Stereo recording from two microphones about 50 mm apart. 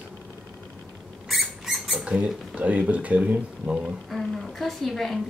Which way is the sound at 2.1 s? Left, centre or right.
Right.